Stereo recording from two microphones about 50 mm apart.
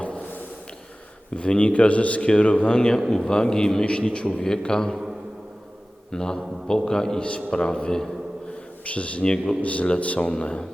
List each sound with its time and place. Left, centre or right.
1.4 s a man's voice: left
6.1 s a man's voice: centre
7.2 s a man's voice: left
8.8 s a man's voice: left